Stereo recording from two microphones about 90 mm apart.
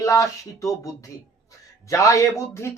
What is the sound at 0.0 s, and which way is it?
Speech, 35° left (ahead or behind).